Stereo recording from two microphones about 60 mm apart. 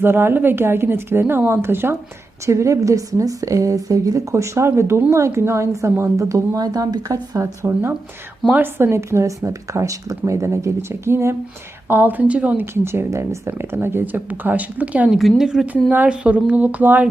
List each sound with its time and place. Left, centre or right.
0.0 s a woman's voice: right
2.5 s a woman's voice: right
7.6 s a woman's voice: right
8.9 s speech: right
11.9 s a woman's voice: right
12.7 s speech: right
13.1 s a woman's voice: right
13.5 s speech: right
15.1 s a woman's voice: centre
16.0 s speech: right